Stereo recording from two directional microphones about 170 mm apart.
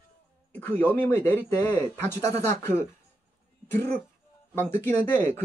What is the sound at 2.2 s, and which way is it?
Speech, 45° right (ahead or behind).